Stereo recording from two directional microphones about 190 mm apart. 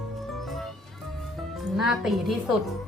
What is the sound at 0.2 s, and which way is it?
Music, centre (ahead or behind).